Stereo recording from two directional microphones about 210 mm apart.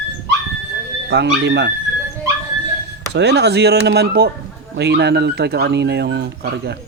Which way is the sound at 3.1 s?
55° right (ahead or behind).